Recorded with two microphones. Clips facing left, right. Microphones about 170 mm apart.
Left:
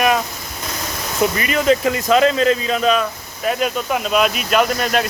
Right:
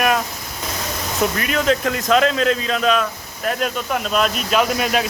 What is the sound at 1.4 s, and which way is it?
Speech, centre (ahead or behind).